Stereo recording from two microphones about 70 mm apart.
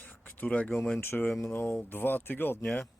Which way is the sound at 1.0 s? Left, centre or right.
Left.